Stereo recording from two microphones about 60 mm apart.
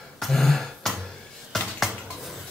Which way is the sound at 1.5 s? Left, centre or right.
Centre.